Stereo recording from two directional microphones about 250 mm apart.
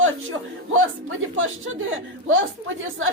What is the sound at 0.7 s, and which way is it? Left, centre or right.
Speech, right.